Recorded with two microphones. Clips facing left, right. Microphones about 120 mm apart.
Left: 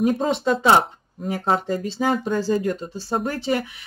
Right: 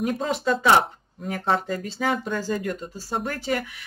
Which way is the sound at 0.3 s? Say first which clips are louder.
Even; 25° left (ahead or behind).